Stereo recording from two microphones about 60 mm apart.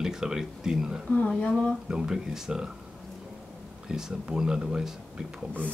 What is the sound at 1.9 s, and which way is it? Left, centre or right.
Speech, centre.